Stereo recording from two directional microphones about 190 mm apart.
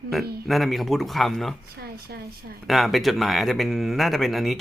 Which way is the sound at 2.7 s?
Centre (ahead or behind).